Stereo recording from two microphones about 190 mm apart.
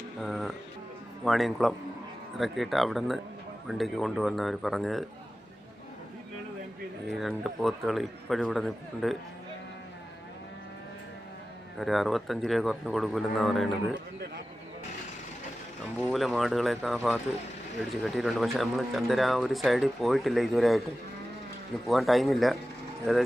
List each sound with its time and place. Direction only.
0.2 s speech: centre (ahead or behind)
7.1 s speech: centre (ahead or behind)
11.8 s speech: centre (ahead or behind)
16.0 s speech: 5° left (ahead or behind)
21.8 s speech: centre (ahead or behind)